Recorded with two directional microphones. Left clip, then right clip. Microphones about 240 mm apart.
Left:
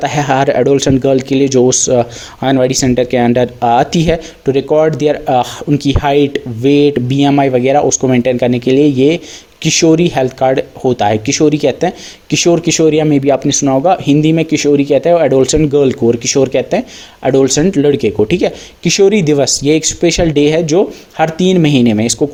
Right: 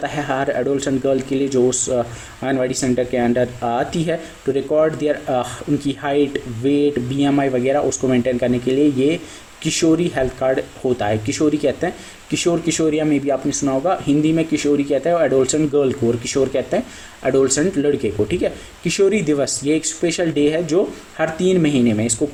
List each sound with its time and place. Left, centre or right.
0.0 s speech: left